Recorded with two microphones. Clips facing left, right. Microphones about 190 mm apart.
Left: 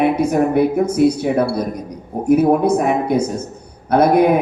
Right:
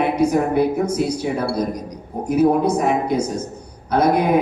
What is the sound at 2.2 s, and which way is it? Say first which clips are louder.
A man's voice: left 3 dB; 55° left (ahead or behind).